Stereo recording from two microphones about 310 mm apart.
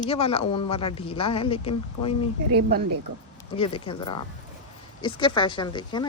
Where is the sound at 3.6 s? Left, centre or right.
Centre.